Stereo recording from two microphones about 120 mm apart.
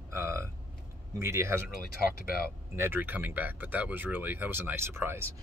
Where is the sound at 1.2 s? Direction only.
20° right (ahead or behind).